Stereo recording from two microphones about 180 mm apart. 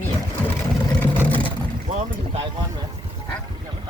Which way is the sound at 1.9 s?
35° right (ahead or behind).